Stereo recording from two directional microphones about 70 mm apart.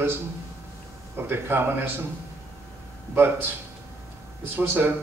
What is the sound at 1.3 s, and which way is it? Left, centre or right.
Speech, right.